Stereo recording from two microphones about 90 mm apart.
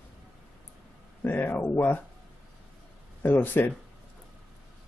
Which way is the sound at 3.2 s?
20° left (ahead or behind).